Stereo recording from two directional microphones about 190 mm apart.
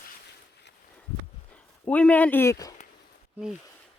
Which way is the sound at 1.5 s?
5° left (ahead or behind).